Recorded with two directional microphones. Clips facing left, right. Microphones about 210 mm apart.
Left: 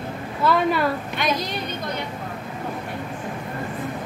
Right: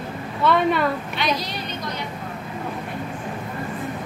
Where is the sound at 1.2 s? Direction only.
50° left (ahead or behind).